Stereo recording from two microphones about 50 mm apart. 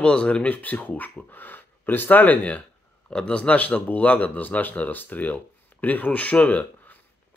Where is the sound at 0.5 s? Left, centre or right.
Left.